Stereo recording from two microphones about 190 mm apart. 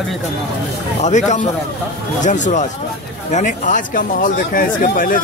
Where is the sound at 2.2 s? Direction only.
40° left (ahead or behind).